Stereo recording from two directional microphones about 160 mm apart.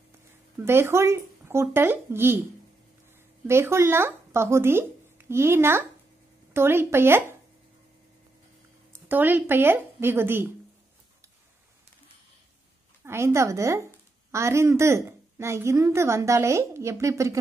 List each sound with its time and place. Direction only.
0.6 s a woman's voice: 15° right (ahead or behind)
3.4 s a woman's voice: 15° right (ahead or behind)
8.9 s speech: 10° right (ahead or behind)
13.0 s a woman's voice: 15° right (ahead or behind)